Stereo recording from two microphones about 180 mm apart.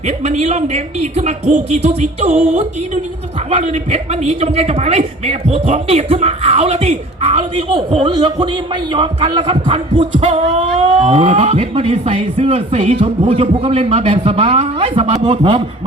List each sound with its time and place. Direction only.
0.3 s a man's voice: 40° right (ahead or behind)